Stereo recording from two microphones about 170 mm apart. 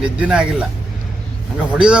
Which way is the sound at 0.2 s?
5° right (ahead or behind).